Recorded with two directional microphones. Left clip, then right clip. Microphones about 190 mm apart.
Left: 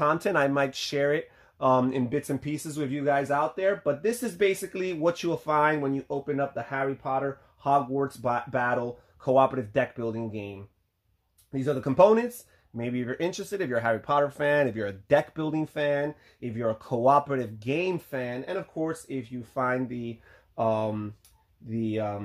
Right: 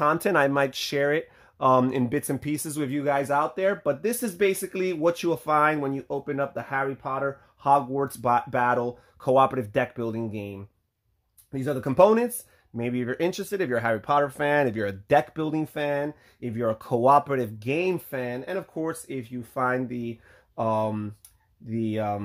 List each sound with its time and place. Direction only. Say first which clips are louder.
0.0 s speech: right 2 dB; 35° right (ahead or behind)